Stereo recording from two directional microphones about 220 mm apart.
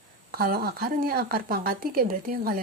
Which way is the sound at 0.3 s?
45° right (ahead or behind).